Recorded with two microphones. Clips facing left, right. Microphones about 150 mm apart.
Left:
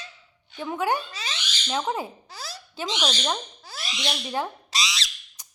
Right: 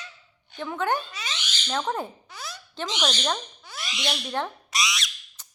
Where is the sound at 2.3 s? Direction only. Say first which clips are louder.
Left 1 dB; 35° left (ahead or behind).